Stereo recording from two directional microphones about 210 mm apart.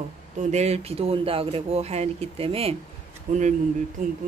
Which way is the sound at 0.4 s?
30° right (ahead or behind).